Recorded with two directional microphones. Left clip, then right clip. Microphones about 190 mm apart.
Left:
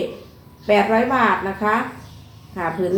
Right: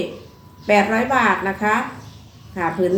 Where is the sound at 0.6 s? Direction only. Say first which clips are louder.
Even; 25° right (ahead or behind).